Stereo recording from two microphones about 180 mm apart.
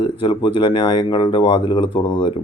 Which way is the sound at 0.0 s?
25° left (ahead or behind).